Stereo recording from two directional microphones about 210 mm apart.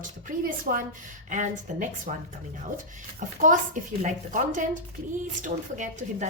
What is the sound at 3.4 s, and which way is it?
Speech, 40° right (ahead or behind).